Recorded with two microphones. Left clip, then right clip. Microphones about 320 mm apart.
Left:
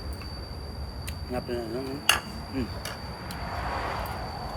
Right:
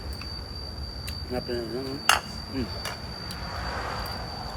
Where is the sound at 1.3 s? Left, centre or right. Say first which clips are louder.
Right 1 dB; centre.